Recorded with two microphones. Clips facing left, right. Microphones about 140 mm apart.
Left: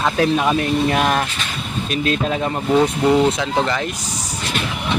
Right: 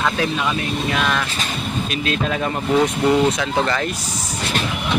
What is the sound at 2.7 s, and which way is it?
Speech, 10° left (ahead or behind).